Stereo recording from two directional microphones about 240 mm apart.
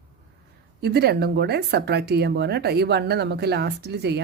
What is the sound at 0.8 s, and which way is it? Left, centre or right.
Speech, right.